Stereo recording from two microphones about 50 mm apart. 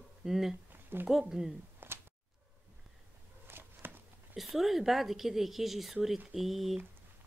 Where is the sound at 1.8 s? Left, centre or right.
Right.